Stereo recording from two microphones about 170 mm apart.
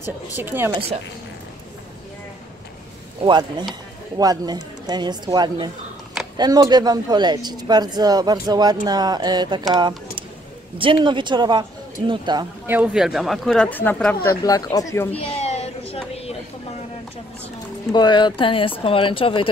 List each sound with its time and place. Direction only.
0.0 s a woman's voice: 10° right (ahead or behind)
3.3 s speech: 25° right (ahead or behind)
12.6 s speech: 10° right (ahead or behind); by 14.3 s 10° left (ahead or behind)
14.4 s speech: 20° left (ahead or behind)
15.1 s a sound: 35° left (ahead or behind)
17.9 s speech: 25° left (ahead or behind)